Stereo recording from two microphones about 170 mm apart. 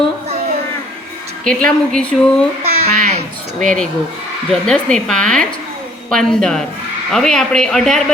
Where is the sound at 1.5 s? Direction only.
5° left (ahead or behind).